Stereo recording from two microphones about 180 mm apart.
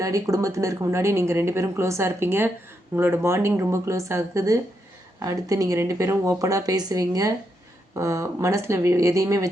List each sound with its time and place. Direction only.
0.0 s speech: 20° right (ahead or behind)